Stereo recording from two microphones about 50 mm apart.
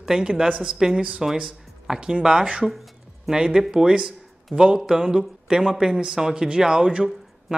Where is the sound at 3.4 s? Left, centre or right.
Centre.